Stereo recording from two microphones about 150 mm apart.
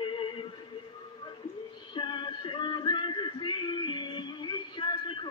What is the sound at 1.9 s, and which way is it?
Music, 30° left (ahead or behind).